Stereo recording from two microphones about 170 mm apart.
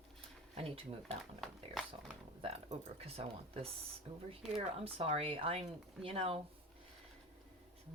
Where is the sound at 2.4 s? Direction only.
35° right (ahead or behind).